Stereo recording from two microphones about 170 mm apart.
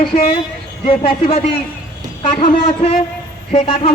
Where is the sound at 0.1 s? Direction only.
40° left (ahead or behind).